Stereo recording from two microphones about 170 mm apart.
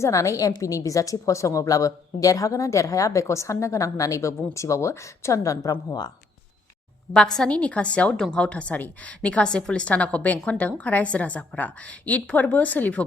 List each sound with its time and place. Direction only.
0.0 s a woman's voice: 20° left (ahead or behind)
7.1 s a woman's voice: 5° left (ahead or behind)